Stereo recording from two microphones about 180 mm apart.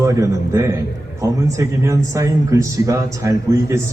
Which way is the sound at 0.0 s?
15° right (ahead or behind).